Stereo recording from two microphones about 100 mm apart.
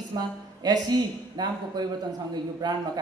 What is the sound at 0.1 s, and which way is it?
A woman's voice, 40° right (ahead or behind).